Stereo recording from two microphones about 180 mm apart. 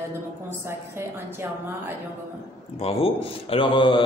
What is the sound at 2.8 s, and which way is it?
Speech, 30° left (ahead or behind).